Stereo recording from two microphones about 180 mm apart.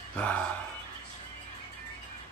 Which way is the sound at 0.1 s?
5° left (ahead or behind).